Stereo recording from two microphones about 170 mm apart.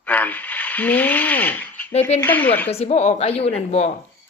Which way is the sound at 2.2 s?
10° left (ahead or behind).